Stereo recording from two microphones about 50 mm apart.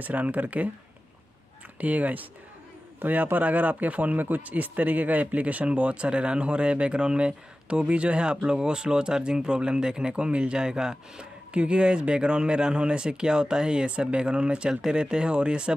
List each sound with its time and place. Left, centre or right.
0.0 s speech: right
1.8 s speech: right